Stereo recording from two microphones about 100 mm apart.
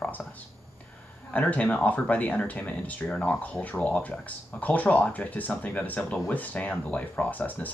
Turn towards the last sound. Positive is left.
turn(degrees=15)  # may be behind; listen again after turning